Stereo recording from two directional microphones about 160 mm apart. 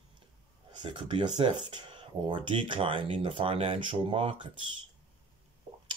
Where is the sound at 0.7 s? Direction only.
30° right (ahead or behind).